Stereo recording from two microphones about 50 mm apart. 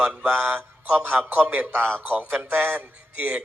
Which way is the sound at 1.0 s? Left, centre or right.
Right.